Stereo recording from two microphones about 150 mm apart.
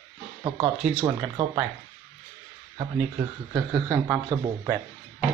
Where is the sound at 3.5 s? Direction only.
25° right (ahead or behind).